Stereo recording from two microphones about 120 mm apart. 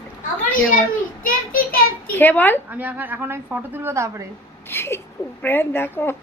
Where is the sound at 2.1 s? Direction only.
15° left (ahead or behind).